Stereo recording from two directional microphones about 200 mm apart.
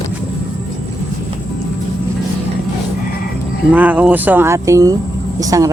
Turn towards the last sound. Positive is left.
turn(degrees=-15)  # may be behind; listen again after turning